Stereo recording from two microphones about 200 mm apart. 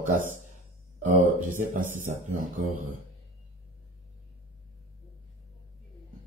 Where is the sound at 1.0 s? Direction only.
40° right (ahead or behind).